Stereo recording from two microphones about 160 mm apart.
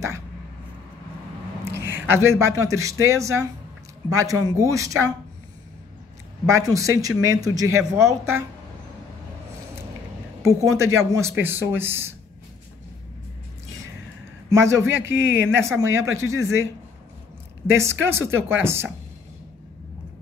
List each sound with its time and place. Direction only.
1.6 s a man's voice: 15° right (ahead or behind)
6.4 s speech: 20° right (ahead or behind)
10.4 s speech: 20° right (ahead or behind)
14.5 s speech: 15° right (ahead or behind)
15.1 s speech: 90° right
15.5 s speech: 15° right (ahead or behind)
17.7 s speech: 15° right (ahead or behind)